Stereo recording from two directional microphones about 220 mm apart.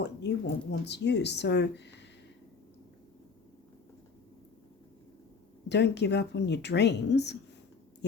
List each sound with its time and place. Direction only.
0.0 s speech: 50° left (ahead or behind)
5.6 s speech: 50° left (ahead or behind)